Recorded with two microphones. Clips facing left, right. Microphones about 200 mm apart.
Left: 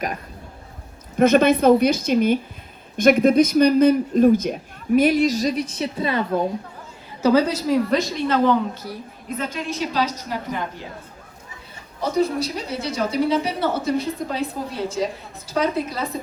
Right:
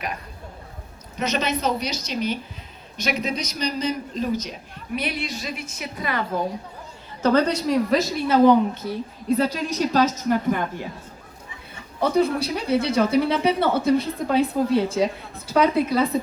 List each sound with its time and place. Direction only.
1.2 s a man's voice: 55° left (ahead or behind); by 6.2 s 25° left (ahead or behind)
7.2 s a woman's voice: 10° left (ahead or behind); by 10.7 s 50° right (ahead or behind)
11.9 s speech: 55° right (ahead or behind)